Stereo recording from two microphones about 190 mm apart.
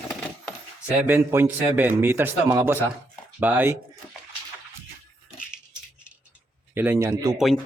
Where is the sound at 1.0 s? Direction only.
10° right (ahead or behind).